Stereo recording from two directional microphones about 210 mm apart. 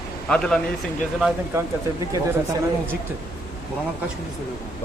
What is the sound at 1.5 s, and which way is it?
Speech, 10° right (ahead or behind).